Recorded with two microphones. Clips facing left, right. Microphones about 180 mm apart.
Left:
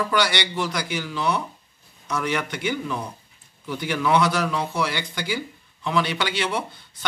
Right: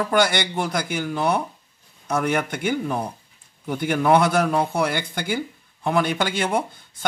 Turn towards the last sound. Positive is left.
turn(degrees=-50)  # may be behind; listen again after turning